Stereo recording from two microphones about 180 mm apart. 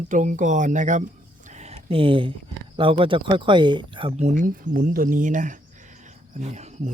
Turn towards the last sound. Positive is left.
turn(degrees=-40)  # may be behind; listen again after turning